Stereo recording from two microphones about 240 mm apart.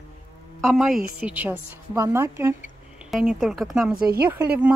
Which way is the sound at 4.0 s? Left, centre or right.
Right.